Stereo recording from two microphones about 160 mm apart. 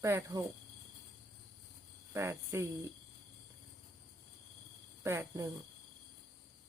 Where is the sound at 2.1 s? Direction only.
15° right (ahead or behind).